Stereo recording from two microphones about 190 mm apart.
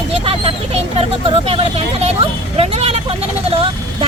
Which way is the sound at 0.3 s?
30° right (ahead or behind).